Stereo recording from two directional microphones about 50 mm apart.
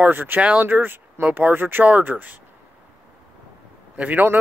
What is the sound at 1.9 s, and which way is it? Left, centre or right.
Speech, right.